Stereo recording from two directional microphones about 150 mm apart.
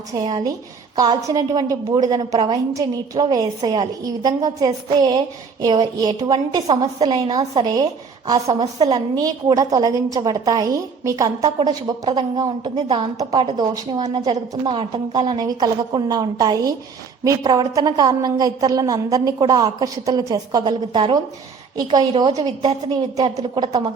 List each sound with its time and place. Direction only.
0.1 s a woman's voice: 30° right (ahead or behind)